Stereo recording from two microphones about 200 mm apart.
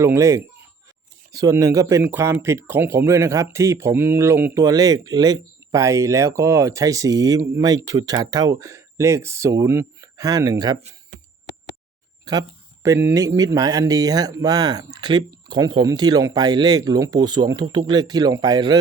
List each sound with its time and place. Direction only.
0.0 s speech: 15° right (ahead or behind)
12.2 s speech: 20° right (ahead or behind)